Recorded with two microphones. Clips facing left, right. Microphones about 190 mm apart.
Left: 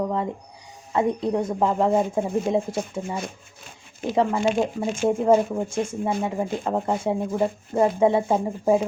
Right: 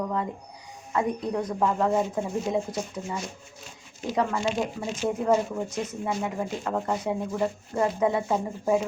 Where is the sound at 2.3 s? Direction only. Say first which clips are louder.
Left 4 dB; 55° left (ahead or behind).